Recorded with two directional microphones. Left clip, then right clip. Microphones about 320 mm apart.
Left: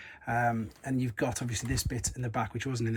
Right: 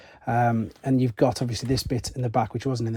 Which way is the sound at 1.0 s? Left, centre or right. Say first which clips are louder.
Right 11 dB; centre.